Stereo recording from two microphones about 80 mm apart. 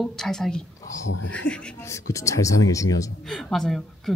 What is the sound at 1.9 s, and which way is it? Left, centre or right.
Speech, left.